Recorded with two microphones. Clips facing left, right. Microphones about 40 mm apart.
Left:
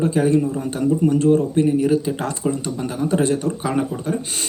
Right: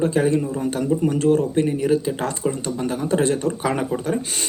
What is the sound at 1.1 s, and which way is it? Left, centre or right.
Speech, right.